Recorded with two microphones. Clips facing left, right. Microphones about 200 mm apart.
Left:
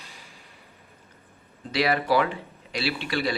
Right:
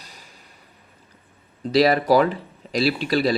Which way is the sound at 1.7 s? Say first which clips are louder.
Right 6 dB; 35° right (ahead or behind).